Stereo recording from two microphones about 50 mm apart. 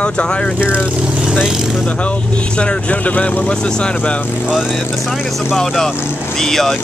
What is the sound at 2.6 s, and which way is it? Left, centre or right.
Speech, left.